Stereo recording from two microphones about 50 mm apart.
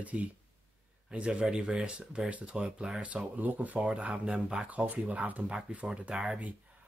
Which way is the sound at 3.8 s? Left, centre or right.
Right.